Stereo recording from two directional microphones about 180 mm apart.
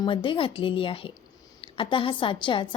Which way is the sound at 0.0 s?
25° left (ahead or behind).